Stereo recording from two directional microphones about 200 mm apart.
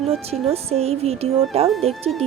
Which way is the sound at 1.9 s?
Centre (ahead or behind).